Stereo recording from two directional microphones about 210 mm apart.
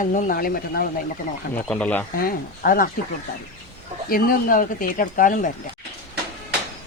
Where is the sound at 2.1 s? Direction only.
45° left (ahead or behind).